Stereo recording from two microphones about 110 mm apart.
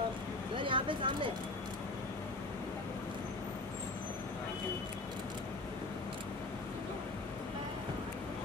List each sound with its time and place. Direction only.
0.6 s vehicle: 50° right (ahead or behind)